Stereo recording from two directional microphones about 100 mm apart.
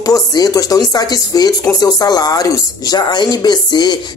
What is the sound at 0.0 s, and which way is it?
Speech, 40° left (ahead or behind).